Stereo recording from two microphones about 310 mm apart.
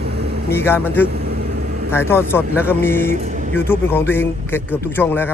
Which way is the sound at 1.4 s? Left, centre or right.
Right.